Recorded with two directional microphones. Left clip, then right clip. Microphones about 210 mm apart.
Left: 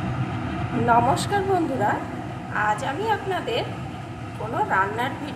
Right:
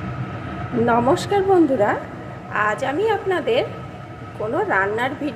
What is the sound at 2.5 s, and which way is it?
A woman's voice, 30° right (ahead or behind).